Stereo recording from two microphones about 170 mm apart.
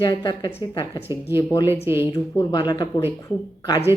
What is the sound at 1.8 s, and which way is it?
Speech, 15° right (ahead or behind).